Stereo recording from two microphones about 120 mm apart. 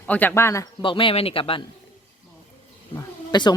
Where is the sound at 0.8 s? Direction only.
45° left (ahead or behind).